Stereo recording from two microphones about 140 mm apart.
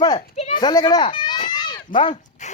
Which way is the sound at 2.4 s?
60° left (ahead or behind).